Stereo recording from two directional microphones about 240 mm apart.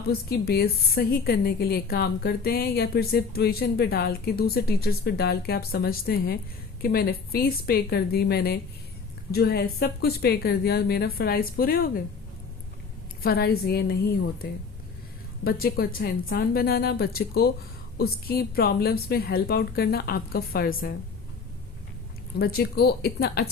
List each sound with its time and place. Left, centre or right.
0.3 s a woman's voice: left
13.2 s a woman's voice: left
15.4 s a woman's voice: left
22.4 s a woman's voice: left